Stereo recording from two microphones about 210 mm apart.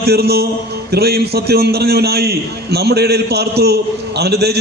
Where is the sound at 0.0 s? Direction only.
50° right (ahead or behind).